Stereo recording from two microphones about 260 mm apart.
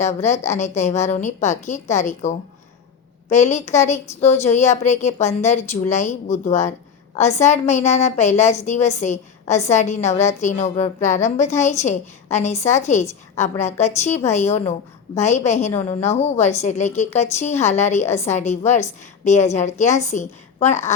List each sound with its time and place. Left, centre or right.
0.0 s a woman's voice: left
4.2 s a woman's voice: centre
4.4 s a woman's voice: left